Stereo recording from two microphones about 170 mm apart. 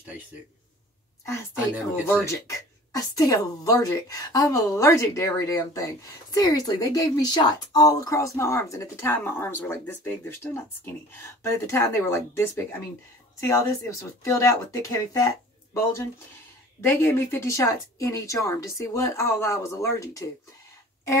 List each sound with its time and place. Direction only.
2.0 s speech: 10° left (ahead or behind)
16.8 s speech: 15° left (ahead or behind)